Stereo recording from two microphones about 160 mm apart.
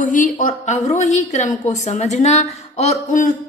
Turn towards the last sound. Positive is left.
turn(degrees=45)  # may be behind; listen again after turning